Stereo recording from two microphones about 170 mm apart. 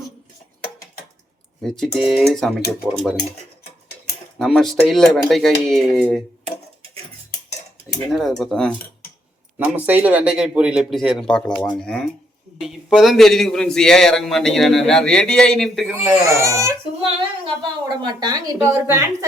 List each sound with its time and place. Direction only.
1.6 s a man's voice: centre (ahead or behind)
4.4 s a man's voice: centre (ahead or behind)
8.1 s a man's voice: centre (ahead or behind)
9.6 s a man's voice: 10° right (ahead or behind)
16.0 s speech: 15° right (ahead or behind)
17.2 s a woman's voice: 30° right (ahead or behind)
18.8 s speech: 10° right (ahead or behind)